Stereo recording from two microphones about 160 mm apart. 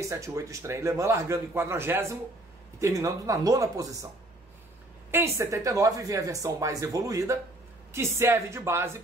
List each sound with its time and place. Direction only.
0.0 s a man's voice: 20° right (ahead or behind)
5.1 s a man's voice: 15° right (ahead or behind)